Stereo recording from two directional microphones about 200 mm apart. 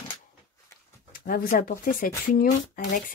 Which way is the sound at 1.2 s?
45° left (ahead or behind).